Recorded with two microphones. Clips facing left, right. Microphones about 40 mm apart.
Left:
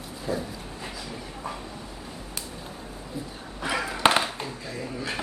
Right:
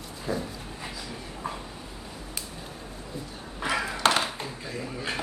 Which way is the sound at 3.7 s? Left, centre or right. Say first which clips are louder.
Even; centre.